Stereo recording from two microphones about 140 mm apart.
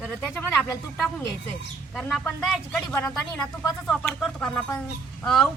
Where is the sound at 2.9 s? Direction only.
20° left (ahead or behind).